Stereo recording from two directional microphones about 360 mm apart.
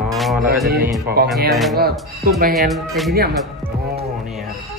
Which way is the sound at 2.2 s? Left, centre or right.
Right.